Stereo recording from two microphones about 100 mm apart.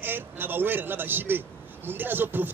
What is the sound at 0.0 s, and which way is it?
A man's voice, 20° right (ahead or behind).